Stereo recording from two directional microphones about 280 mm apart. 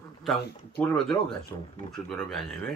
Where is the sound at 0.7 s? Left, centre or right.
Centre.